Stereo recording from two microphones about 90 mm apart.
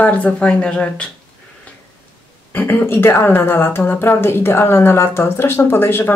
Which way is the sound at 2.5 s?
20° left (ahead or behind).